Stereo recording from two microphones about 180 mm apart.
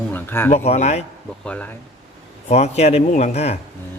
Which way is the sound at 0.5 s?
35° left (ahead or behind).